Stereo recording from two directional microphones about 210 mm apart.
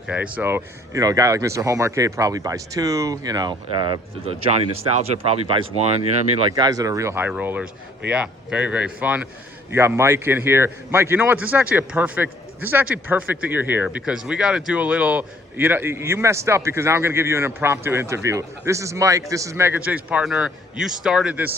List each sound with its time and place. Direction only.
0.1 s a man's voice: 5° right (ahead or behind); by 5.5 s 30° right (ahead or behind)
6.5 s a man's voice: 15° right (ahead or behind)